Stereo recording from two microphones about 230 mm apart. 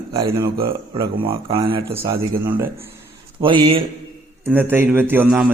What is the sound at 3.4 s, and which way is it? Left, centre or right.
Speech, right.